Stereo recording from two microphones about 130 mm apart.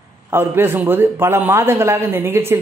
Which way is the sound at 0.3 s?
15° right (ahead or behind).